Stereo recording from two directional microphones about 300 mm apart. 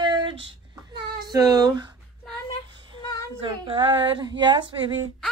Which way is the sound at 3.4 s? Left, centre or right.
Centre.